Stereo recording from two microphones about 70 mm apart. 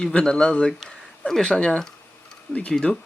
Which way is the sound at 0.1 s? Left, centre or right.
Centre.